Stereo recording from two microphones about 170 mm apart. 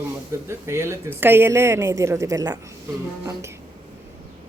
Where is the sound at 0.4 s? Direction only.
15° right (ahead or behind).